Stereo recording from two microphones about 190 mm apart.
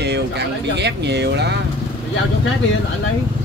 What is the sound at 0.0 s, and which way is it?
Speech, 65° right (ahead or behind).